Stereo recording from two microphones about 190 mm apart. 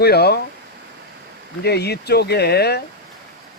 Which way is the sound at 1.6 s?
60° left (ahead or behind).